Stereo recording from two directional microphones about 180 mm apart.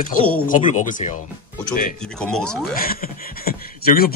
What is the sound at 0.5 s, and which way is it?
Speech, 45° left (ahead or behind).